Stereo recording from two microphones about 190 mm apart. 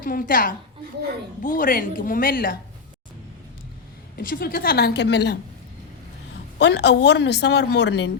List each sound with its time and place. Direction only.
0.0 s a woman's voice: 45° left (ahead or behind)
4.2 s a woman's voice: 50° left (ahead or behind)
6.6 s a woman's voice: 65° left (ahead or behind)